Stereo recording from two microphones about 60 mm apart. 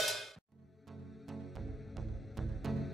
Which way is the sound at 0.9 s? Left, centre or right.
Centre.